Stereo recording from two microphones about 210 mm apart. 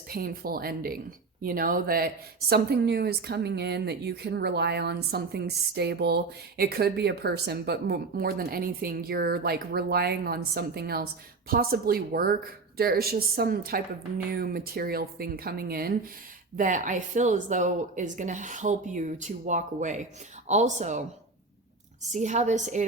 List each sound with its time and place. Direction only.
0.1 s a woman's voice: 45° right (ahead or behind)
22.1 s speech: 35° right (ahead or behind)